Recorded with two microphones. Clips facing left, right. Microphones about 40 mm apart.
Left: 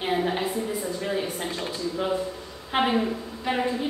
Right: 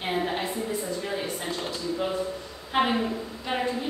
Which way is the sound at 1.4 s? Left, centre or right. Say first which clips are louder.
Left 2 dB; left.